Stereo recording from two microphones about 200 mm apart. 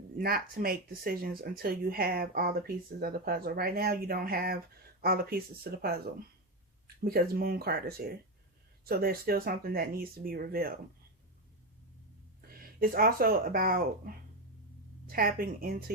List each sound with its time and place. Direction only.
0.2 s speech: 50° right (ahead or behind)
12.4 s a woman's voice: 50° right (ahead or behind)